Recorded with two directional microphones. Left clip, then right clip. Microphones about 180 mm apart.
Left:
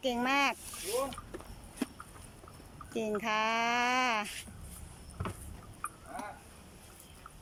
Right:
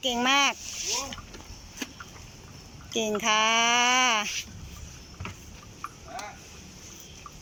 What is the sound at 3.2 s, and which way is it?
Speech, 5° left (ahead or behind).